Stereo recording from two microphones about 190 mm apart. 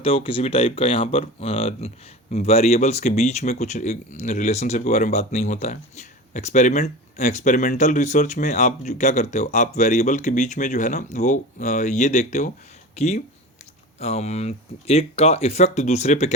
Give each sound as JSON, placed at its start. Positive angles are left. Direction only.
{"t": 0.0, "sound": "speech", "side_deg": 30}